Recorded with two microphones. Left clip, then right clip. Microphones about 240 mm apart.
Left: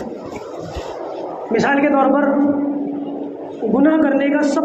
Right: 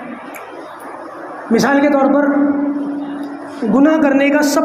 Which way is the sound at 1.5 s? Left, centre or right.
Right.